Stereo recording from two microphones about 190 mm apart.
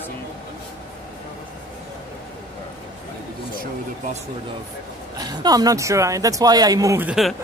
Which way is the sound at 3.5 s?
45° right (ahead or behind).